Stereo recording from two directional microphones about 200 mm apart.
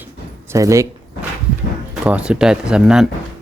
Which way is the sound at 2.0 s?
5° right (ahead or behind).